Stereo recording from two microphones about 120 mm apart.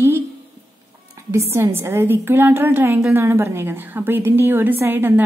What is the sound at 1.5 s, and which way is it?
A woman's voice, 20° right (ahead or behind).